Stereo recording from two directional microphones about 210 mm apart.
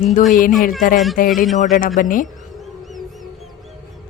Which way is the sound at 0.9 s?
Centre (ahead or behind).